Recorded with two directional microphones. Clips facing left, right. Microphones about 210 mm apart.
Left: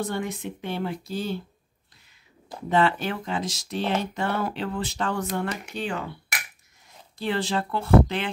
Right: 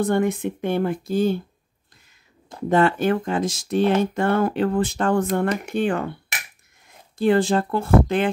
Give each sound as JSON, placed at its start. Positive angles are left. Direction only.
{"t": 0.0, "sound": "speech", "side_deg": -55}
{"t": 2.7, "sound": "speech", "side_deg": -50}
{"t": 7.2, "sound": "speech", "side_deg": -50}